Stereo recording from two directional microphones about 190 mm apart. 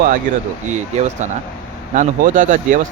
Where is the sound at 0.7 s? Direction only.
40° right (ahead or behind).